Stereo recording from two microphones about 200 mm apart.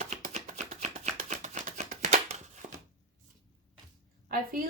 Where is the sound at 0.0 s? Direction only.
35° right (ahead or behind).